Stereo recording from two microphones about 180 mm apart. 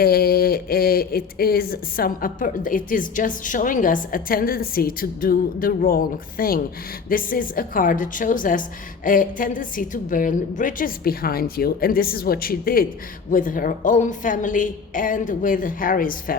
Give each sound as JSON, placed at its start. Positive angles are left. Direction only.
{"t": 0.0, "sound": "speech", "side_deg": 60}